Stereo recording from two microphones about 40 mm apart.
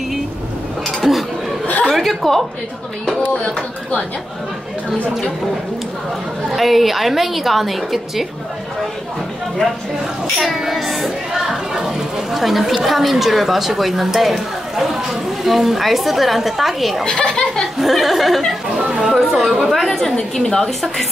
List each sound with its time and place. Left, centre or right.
0.8 s dishes: centre
1.9 s a woman's voice: centre
6.5 s speech: centre
10.4 s a sound: centre
12.8 s speech: centre
17.0 s speech: centre
17.7 s speech: centre
18.8 s speech: right
19.4 s speech: centre
19.7 s speech: centre